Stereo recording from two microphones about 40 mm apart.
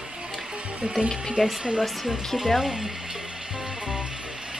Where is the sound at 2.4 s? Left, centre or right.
Centre.